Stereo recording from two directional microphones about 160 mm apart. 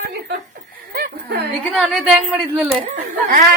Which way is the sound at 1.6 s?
Centre (ahead or behind).